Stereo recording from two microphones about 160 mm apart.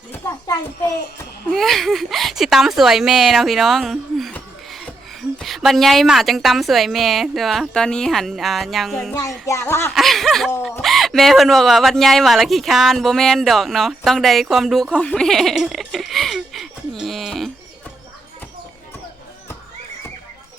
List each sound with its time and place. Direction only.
0.1 s a child's voice: 20° left (ahead or behind)
1.5 s speech: centre (ahead or behind)
9.5 s speech: 15° left (ahead or behind)
9.9 s speech: centre (ahead or behind)